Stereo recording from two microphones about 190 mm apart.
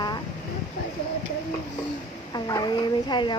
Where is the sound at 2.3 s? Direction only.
20° left (ahead or behind).